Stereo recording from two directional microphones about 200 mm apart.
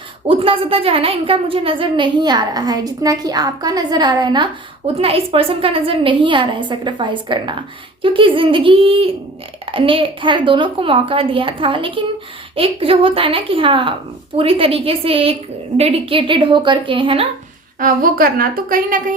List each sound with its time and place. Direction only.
0.3 s a woman's voice: 25° right (ahead or behind)
17.7 s a woman's voice: 45° right (ahead or behind)